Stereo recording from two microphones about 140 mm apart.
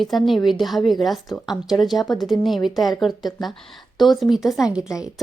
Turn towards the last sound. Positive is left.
turn(degrees=-5)  # may be behind; listen again after turning